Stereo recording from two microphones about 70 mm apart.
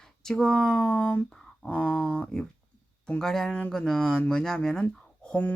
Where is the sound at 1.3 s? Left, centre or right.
Centre.